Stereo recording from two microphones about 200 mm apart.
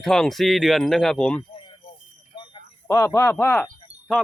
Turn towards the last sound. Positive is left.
turn(degrees=0)  # may be behind; listen again after turning